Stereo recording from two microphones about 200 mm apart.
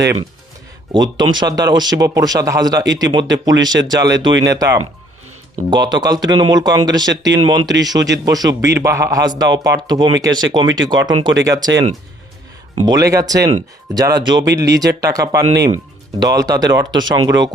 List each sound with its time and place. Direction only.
0.9 s speech: 20° right (ahead or behind)
12.8 s speech: 20° right (ahead or behind)
15.4 s speech: 75° right (ahead or behind)
16.2 s speech: 20° right (ahead or behind)